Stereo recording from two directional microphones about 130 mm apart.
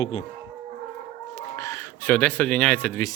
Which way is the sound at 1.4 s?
20° left (ahead or behind).